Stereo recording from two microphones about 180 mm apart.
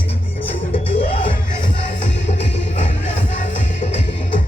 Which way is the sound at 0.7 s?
30° left (ahead or behind).